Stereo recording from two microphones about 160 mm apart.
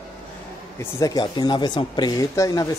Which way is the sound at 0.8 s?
20° left (ahead or behind).